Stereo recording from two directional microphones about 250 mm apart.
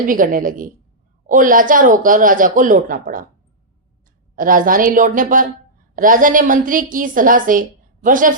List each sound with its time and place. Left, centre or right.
0.0 s speech: right
4.4 s a woman's voice: right